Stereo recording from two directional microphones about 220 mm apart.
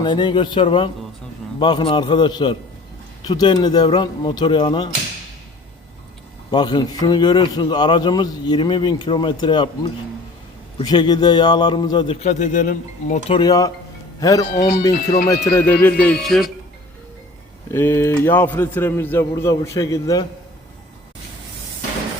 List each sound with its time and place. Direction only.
0.0 s a man's voice: 20° left (ahead or behind)
6.5 s a man's voice: 20° left (ahead or behind)
14.9 s speech: 45° left (ahead or behind)
15.3 s a man's voice: 10° left (ahead or behind)
17.7 s a man's voice: 10° left (ahead or behind)